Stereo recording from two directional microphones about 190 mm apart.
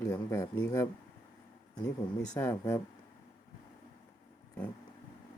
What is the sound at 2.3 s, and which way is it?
Speech, 15° left (ahead or behind).